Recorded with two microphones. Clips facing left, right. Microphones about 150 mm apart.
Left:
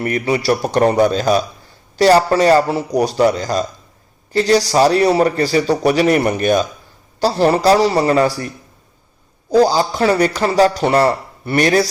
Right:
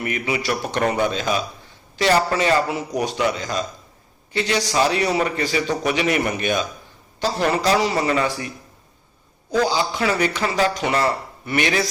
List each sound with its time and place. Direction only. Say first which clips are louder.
0.0 s speech: left 7 dB; 40° left (ahead or behind)